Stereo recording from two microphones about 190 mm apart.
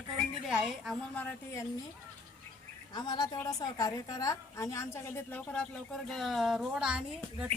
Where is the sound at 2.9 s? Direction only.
20° left (ahead or behind); by 7.5 s 5° right (ahead or behind).